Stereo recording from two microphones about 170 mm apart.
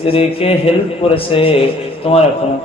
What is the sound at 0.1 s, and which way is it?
A man's voice, 35° left (ahead or behind).